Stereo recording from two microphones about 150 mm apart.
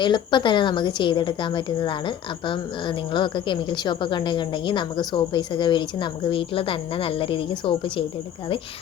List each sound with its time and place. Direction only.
0.0 s a woman's voice: 30° left (ahead or behind)